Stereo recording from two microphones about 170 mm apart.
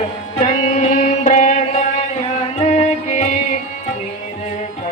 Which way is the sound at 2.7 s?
45° left (ahead or behind).